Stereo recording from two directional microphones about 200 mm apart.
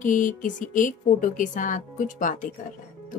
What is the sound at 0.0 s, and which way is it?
A woman's voice, 40° left (ahead or behind).